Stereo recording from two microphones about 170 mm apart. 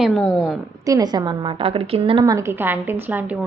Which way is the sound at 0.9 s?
25° right (ahead or behind).